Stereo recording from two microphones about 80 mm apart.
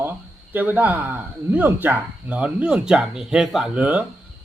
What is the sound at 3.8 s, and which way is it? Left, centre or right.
Speech, centre.